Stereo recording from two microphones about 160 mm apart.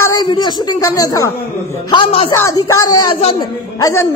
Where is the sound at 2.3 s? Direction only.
20° left (ahead or behind).